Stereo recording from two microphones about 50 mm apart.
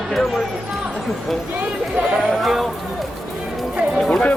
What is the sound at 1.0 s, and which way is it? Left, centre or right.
Speech, centre.